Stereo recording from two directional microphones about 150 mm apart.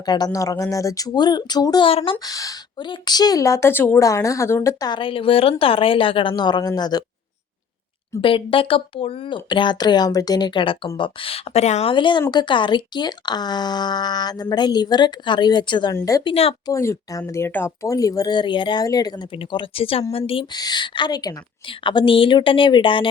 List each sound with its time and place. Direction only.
0.0 s a woman's voice: 25° left (ahead or behind)
1.9 s speech: 40° left (ahead or behind)
2.2 s a woman's voice: 25° left (ahead or behind)
8.2 s a woman's voice: 35° left (ahead or behind)
16.3 s speech: 40° left (ahead or behind)
16.6 s a woman's voice: 20° left (ahead or behind)